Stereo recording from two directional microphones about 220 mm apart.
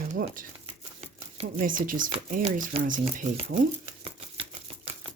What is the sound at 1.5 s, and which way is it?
Speech, 40° right (ahead or behind).